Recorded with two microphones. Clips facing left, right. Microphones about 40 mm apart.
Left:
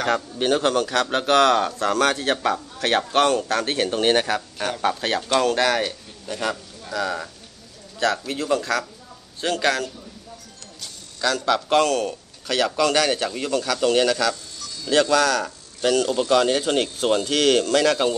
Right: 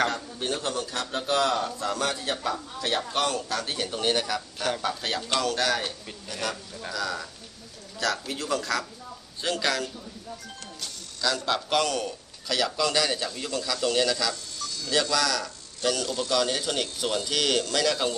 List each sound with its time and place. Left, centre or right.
0.1 s a man's voice: left
1.1 s a man's voice: left
6.9 s a man's voice: left
8.0 s speech: left
9.5 s a man's voice: left
12.1 s speech: left